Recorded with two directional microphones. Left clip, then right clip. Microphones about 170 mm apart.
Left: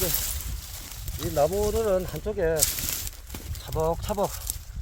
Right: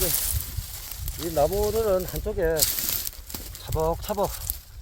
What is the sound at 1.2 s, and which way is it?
Speech, 50° right (ahead or behind).